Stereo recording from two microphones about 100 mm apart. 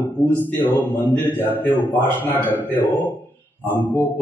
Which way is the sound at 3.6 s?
20° left (ahead or behind).